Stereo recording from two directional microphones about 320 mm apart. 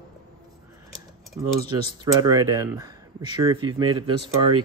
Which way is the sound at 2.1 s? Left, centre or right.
Centre.